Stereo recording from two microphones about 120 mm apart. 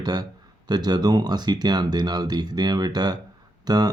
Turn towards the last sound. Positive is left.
turn(degrees=-35)  # may be behind; listen again after turning